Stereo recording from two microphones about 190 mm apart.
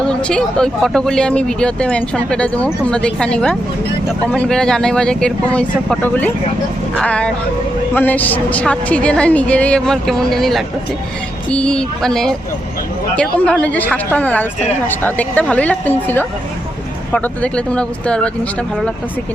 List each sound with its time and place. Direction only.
0.1 s a woman's voice: 5° left (ahead or behind)